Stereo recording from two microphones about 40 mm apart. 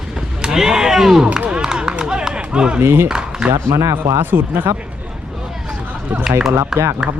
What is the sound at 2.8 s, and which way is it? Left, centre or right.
Speech, right.